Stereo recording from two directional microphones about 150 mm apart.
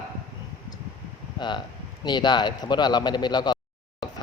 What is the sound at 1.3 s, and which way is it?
A man's voice, 30° left (ahead or behind).